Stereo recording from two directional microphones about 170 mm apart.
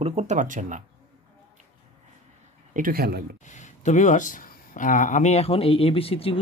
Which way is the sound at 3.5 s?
45° left (ahead or behind).